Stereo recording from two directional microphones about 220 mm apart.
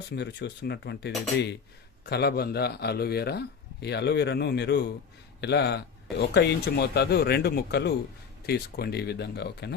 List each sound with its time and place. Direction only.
0.1 s speech: 50° left (ahead or behind)